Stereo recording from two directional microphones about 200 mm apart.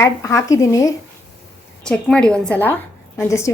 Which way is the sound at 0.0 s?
15° left (ahead or behind).